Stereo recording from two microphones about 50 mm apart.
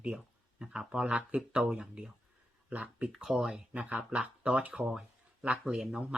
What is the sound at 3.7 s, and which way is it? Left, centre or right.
Speech, right.